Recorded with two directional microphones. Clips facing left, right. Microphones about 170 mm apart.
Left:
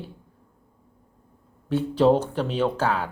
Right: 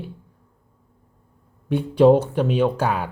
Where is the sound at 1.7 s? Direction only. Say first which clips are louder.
Right 4 dB; 10° right (ahead or behind).